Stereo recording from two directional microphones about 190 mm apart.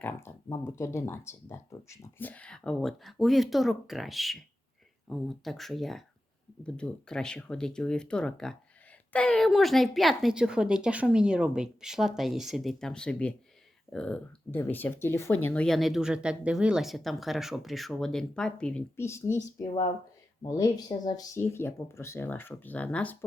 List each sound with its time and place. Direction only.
0.0 s speech: 15° left (ahead or behind)
19.6 s speech: 30° left (ahead or behind); by 23.1 s 5° left (ahead or behind)